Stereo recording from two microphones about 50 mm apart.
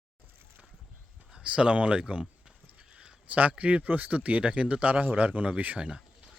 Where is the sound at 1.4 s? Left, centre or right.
Centre.